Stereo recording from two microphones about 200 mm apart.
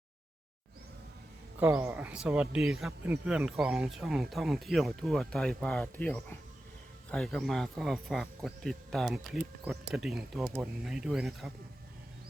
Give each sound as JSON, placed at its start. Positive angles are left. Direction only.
{"t": 1.5, "sound": "speech", "side_deg": -10}